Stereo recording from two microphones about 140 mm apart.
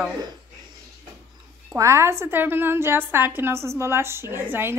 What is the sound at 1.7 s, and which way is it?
A woman's voice, 20° right (ahead or behind).